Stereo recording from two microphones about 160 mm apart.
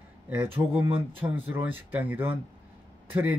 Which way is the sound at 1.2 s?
10° right (ahead or behind).